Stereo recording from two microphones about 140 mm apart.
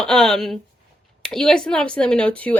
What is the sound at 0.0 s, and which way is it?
Speech, 5° left (ahead or behind).